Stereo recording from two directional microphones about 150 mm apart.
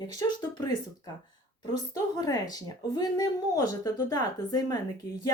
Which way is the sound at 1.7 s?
25° left (ahead or behind).